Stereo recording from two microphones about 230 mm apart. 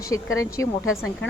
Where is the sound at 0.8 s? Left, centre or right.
Left.